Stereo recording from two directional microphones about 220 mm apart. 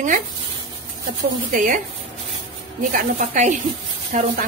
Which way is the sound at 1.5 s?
35° right (ahead or behind).